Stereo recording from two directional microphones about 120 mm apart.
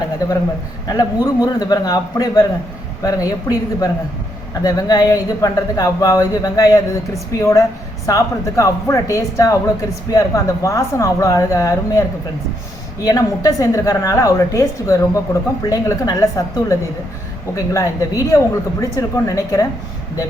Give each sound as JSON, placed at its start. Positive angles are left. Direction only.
{"t": 0.9, "sound": "a woman's voice", "side_deg": 30}
{"t": 13.1, "sound": "a woman's voice", "side_deg": 30}